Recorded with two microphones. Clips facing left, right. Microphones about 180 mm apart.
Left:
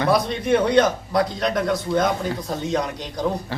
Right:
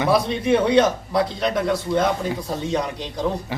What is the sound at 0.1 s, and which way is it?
A man's voice, centre (ahead or behind).